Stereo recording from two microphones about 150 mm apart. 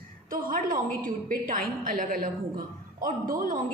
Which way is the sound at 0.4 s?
65° right (ahead or behind).